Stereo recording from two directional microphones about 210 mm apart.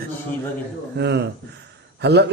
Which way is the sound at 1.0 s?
55° right (ahead or behind).